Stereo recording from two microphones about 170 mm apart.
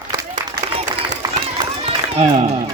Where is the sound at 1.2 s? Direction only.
20° right (ahead or behind).